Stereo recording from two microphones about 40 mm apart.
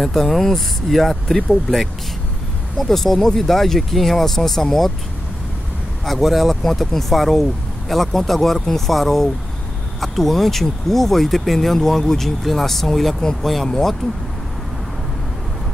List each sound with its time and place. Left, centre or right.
0.0 s speech: centre
6.0 s speech: centre
13.2 s speech: centre